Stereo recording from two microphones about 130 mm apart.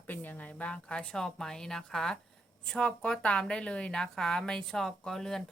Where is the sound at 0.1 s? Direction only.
15° left (ahead or behind).